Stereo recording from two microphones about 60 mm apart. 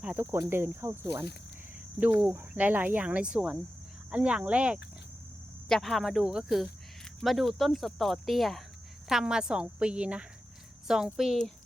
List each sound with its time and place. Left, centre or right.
0.2 s speech: right
2.0 s speech: right
5.6 s a woman's voice: centre
7.2 s a woman's voice: centre